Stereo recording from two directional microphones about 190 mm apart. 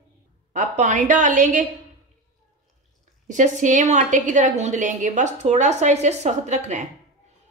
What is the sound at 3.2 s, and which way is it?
A woman's voice, 40° right (ahead or behind).